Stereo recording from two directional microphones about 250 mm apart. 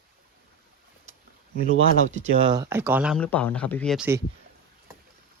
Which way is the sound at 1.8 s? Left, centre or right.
Left.